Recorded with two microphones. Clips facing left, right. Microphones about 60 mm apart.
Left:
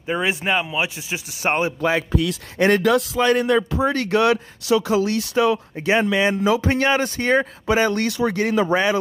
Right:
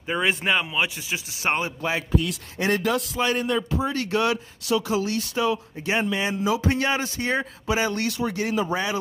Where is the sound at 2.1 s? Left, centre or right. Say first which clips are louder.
Left 3 dB; left.